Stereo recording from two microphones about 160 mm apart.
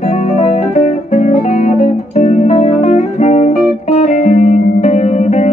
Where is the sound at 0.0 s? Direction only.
45° left (ahead or behind).